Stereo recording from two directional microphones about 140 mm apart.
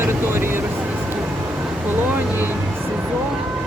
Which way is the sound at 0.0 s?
15° right (ahead or behind).